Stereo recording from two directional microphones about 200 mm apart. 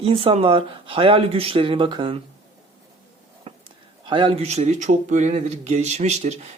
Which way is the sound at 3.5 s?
30° right (ahead or behind).